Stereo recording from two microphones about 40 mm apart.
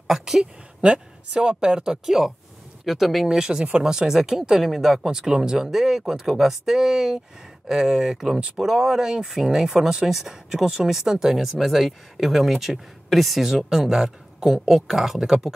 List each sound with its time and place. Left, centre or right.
0.0 s a woman's voice: centre
0.7 s speech: right; by 3.3 s centre
3.3 s speech: centre